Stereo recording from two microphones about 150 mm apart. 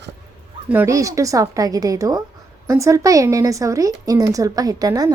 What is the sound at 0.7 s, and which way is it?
A woman's voice, 15° right (ahead or behind).